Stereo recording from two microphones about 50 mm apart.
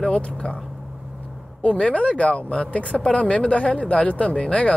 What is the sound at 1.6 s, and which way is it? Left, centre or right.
Speech, left.